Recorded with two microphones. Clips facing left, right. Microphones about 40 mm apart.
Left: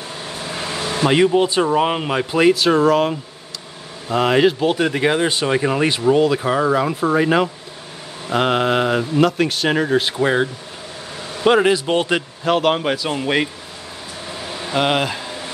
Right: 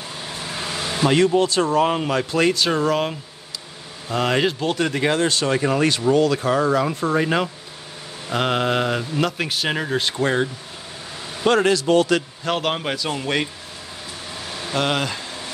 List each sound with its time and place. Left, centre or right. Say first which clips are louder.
0.2 s speech: left 2 dB; centre; by 12.2 s left
12.4 s speech: left 7 dB; centre
14.3 s air conditioning: left 3 dB; centre